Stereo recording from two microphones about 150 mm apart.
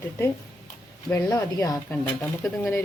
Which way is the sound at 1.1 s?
20° left (ahead or behind).